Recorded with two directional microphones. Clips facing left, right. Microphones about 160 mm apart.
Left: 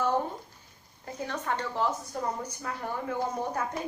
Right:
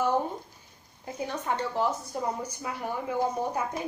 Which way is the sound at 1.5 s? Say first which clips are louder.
Right 2 dB; 15° right (ahead or behind).